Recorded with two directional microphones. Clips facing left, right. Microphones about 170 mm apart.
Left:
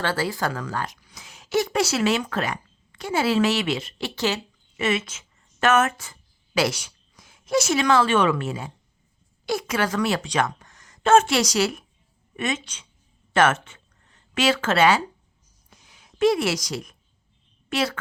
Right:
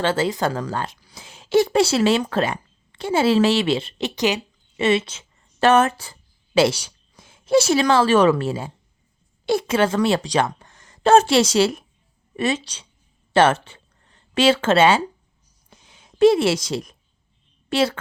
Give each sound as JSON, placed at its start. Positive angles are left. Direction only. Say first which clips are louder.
{"t": 0.0, "sound": "speech", "louder": "right 5 dB", "side_deg": -20}
{"t": 4.8, "sound": "a woman's voice", "louder": "right 5 dB", "side_deg": -30}
{"t": 15.7, "sound": "a sound", "louder": "right 3 dB", "side_deg": -25}
{"t": 17.7, "sound": "a woman's voice", "louder": "right 5 dB", "side_deg": -30}